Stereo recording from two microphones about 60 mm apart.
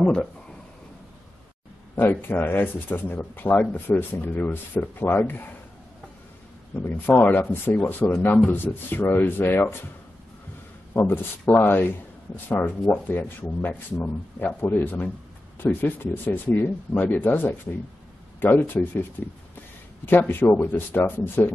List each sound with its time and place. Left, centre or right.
0.0 s speech: centre
2.0 s speech: left
6.9 s speech: left
10.9 s speech: left